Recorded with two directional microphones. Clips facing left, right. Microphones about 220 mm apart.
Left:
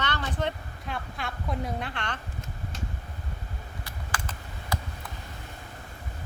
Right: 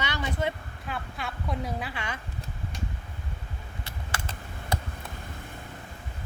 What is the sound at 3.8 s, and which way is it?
Computer keyboard, 25° right (ahead or behind).